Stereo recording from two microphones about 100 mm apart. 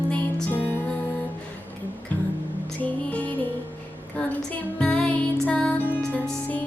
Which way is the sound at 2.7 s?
15° left (ahead or behind).